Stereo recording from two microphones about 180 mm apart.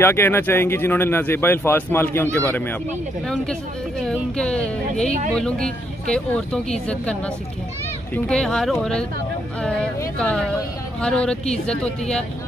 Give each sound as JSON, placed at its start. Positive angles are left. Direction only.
{"t": 0.0, "sound": "speech", "side_deg": 15}
{"t": 4.0, "sound": "speech", "side_deg": 5}
{"t": 8.1, "sound": "speech", "side_deg": 5}